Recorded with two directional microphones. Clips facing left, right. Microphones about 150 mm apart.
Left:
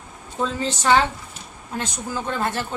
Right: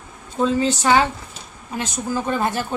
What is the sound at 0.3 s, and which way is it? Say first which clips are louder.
A woman's voice: right 6 dB; 10° right (ahead or behind).